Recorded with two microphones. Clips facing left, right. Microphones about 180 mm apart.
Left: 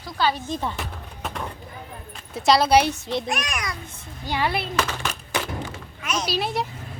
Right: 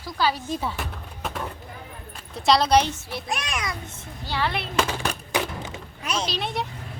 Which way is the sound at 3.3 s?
25° right (ahead or behind).